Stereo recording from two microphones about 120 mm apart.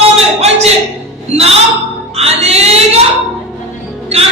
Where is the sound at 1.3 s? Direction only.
60° right (ahead or behind).